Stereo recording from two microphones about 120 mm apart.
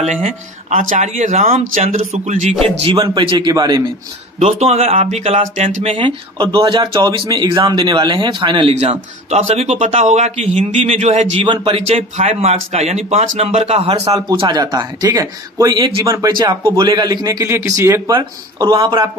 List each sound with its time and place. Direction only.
0.0 s speech: 70° right (ahead or behind)
2.6 s speech: 45° right (ahead or behind)
4.4 s a man's voice: 60° right (ahead or behind)
6.0 s speech: 35° right (ahead or behind)
8.7 s a man's voice: 65° right (ahead or behind)
11.3 s speech: 45° right (ahead or behind)
11.8 s a man's voice: 60° right (ahead or behind)
14.3 s a man's voice: 40° right (ahead or behind); by 18.1 s 25° right (ahead or behind)
18.1 s speech: 40° right (ahead or behind)